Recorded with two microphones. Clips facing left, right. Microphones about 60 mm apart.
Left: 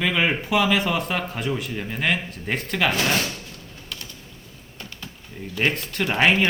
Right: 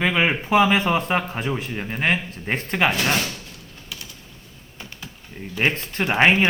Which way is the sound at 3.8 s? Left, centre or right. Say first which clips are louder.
Even; centre.